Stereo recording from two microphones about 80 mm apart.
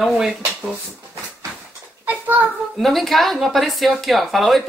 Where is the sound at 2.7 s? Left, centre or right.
Centre.